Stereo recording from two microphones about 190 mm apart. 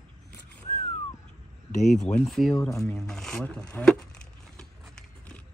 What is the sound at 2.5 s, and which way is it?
Speech, 15° left (ahead or behind).